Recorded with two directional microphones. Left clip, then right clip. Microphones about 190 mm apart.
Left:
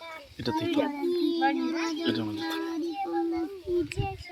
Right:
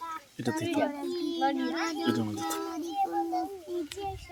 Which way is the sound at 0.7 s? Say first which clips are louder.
Even; 10° right (ahead or behind).